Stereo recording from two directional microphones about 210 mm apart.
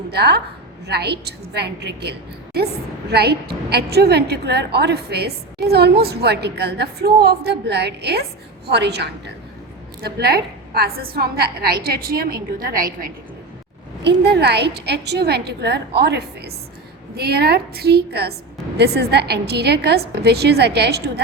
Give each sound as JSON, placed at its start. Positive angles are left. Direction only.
{"t": 0.1, "sound": "a woman's voice", "side_deg": -50}
{"t": 14.0, "sound": "a woman's voice", "side_deg": -55}